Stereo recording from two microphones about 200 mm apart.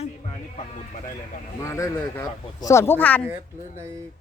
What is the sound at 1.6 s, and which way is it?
Speech, 15° left (ahead or behind).